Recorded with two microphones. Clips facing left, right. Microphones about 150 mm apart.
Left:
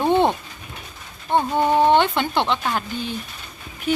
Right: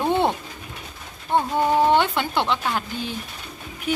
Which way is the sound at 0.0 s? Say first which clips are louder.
Left 3 dB; 20° left (ahead or behind).